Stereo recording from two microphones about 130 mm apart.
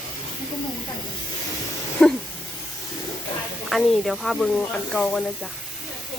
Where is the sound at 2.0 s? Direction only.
5° left (ahead or behind).